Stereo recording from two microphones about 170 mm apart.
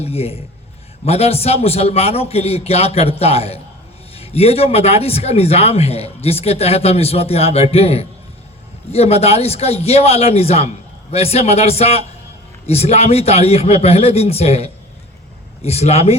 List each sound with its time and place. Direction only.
0.0 s a man's voice: 35° left (ahead or behind)